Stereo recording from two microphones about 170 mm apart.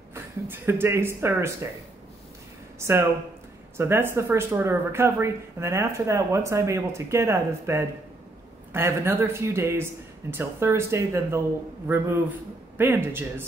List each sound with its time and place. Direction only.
0.1 s speech: 15° right (ahead or behind)
3.7 s speech: 15° right (ahead or behind)